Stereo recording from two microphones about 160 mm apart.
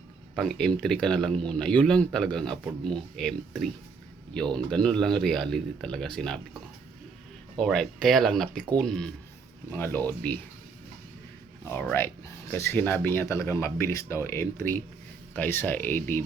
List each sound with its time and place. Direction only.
0.3 s speech: 5° left (ahead or behind)
7.6 s speech: centre (ahead or behind)
11.7 s speech: 10° left (ahead or behind)